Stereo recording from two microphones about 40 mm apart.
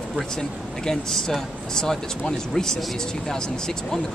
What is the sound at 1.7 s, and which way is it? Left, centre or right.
Speech, centre.